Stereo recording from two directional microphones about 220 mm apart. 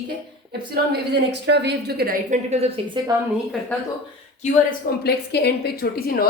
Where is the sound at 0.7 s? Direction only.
50° right (ahead or behind).